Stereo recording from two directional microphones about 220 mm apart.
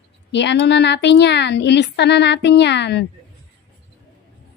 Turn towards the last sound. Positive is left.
turn(degrees=50)  # may be behind; listen again after turning